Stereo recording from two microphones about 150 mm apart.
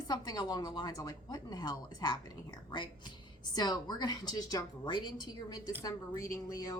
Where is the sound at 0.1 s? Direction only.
25° left (ahead or behind).